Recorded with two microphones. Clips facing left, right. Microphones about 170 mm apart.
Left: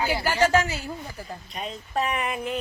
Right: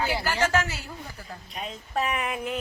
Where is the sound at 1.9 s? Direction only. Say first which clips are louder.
Left 1 dB; 5° right (ahead or behind).